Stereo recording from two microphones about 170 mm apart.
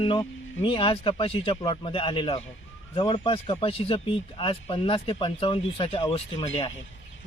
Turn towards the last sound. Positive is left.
turn(degrees=30)  # may be behind; listen again after turning